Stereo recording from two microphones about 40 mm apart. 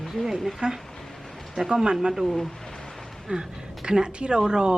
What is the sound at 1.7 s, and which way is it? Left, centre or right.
Speech, right.